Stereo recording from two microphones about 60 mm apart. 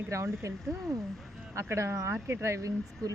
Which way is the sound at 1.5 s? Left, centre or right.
Right.